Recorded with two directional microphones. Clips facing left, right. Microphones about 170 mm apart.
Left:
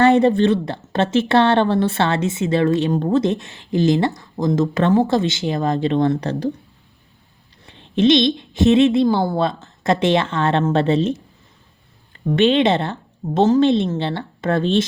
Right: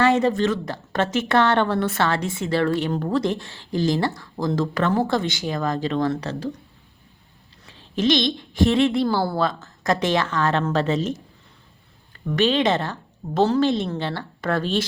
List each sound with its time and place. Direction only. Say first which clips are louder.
0.0 s speech: left 5 dB; 30° left (ahead or behind)
7.7 s speech: left 6 dB; 25° left (ahead or behind)
12.2 s speech: left 5 dB; 30° left (ahead or behind)